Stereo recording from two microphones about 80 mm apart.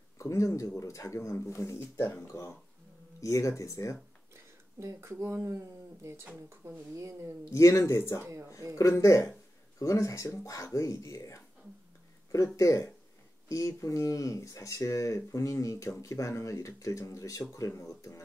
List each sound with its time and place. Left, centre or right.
0.2 s speech: left
3.2 s speech: left
4.7 s speech: right
7.5 s speech: left
12.5 s speech: left